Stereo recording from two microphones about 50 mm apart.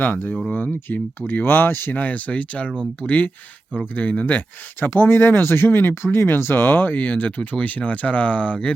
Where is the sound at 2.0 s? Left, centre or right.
Left.